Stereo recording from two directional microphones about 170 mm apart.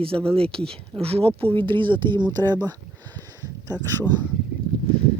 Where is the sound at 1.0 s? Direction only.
35° right (ahead or behind).